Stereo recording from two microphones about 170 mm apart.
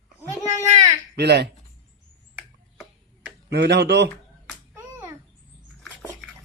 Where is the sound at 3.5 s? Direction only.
80° right.